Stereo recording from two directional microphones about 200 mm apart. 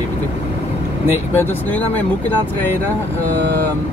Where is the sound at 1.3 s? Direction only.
10° left (ahead or behind).